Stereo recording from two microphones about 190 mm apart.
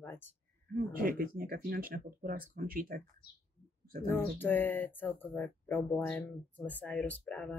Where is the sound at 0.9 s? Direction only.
50° right (ahead or behind).